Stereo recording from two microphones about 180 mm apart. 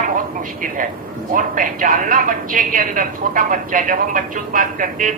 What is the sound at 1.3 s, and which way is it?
A woman's voice, 45° right (ahead or behind).